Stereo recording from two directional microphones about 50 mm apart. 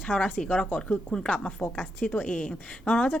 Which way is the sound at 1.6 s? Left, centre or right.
Left.